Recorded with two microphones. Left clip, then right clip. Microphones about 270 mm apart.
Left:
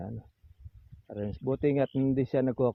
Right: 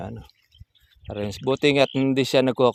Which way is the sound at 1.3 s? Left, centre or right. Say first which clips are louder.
Right 8 dB; right.